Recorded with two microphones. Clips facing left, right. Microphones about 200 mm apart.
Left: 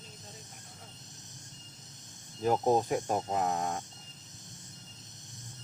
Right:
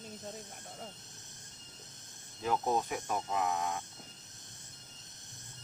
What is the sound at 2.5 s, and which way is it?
Speech, 25° left (ahead or behind).